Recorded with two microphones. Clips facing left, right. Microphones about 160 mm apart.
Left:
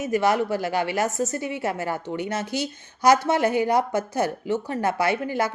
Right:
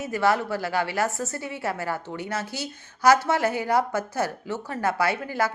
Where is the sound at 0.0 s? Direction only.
20° left (ahead or behind).